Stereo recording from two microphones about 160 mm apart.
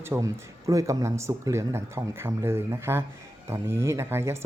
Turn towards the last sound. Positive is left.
turn(degrees=-15)  # may be behind; listen again after turning